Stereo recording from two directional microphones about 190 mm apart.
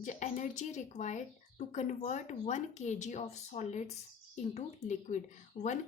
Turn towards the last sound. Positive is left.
turn(degrees=40)  # may be behind; listen again after turning